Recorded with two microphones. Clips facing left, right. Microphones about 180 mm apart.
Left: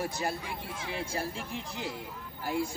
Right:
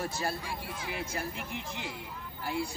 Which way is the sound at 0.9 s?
30° left (ahead or behind).